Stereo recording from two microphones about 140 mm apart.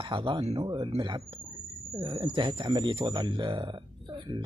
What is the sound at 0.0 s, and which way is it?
Speech, 35° right (ahead or behind).